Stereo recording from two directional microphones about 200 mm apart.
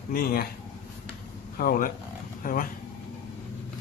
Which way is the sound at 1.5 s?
45° left (ahead or behind).